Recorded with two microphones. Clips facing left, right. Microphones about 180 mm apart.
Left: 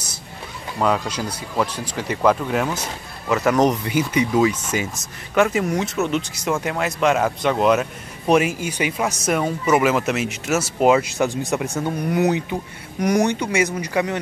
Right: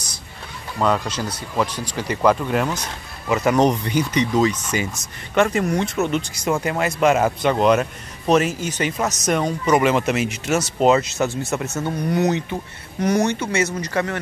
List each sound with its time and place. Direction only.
0.7 s speech: 5° left (ahead or behind)